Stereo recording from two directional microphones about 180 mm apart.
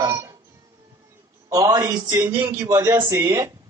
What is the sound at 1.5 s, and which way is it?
A man's voice, 20° right (ahead or behind).